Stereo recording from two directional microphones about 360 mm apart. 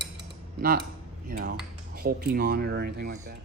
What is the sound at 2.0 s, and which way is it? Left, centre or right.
Speech, right.